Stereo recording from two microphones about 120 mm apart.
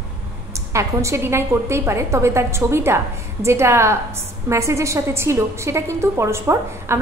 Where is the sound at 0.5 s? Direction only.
25° right (ahead or behind).